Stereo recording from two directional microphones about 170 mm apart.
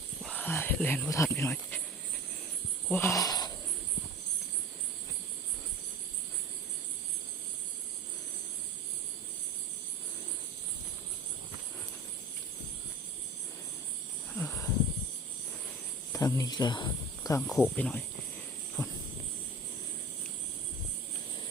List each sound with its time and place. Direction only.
0.2 s speech: 5° left (ahead or behind)
2.9 s speech: 15° left (ahead or behind)
14.3 s a sound: 15° left (ahead or behind)
16.1 s snake: 20° left (ahead or behind)
17.4 s speech: 5° left (ahead or behind)